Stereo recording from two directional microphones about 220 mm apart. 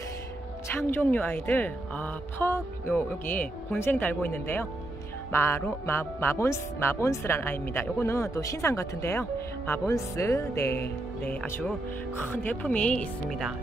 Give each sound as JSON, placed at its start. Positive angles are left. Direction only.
{"t": 0.7, "sound": "speech", "side_deg": 10}